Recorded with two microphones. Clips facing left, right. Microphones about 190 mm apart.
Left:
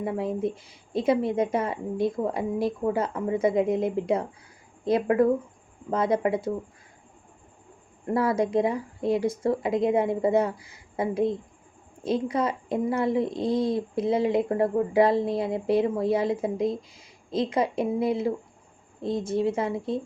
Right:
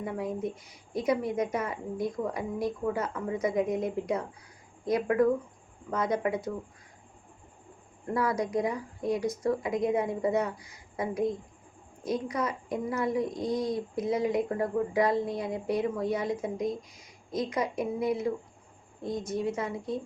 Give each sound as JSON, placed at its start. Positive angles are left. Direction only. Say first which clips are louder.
{"t": 0.0, "sound": "a woman's voice", "louder": "left 5 dB", "side_deg": 25}
{"t": 8.1, "sound": "a woman's voice", "louder": "left 5 dB", "side_deg": 30}